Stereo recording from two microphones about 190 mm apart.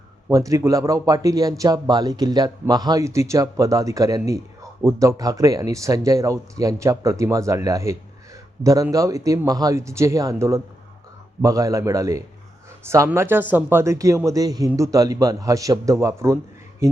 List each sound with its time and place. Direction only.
0.3 s speech: 15° right (ahead or behind)